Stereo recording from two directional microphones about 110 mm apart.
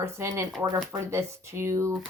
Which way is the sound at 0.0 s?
25° right (ahead or behind).